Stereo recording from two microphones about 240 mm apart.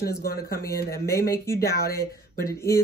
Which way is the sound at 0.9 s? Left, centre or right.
Centre.